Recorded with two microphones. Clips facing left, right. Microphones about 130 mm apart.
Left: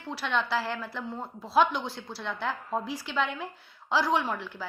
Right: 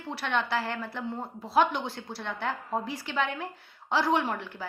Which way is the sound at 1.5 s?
55° right (ahead or behind).